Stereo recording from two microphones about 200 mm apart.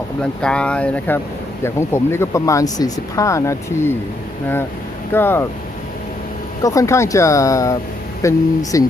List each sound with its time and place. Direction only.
0.2 s speech: 5° left (ahead or behind)
5.1 s speech: 10° left (ahead or behind)
6.6 s speech: 15° left (ahead or behind)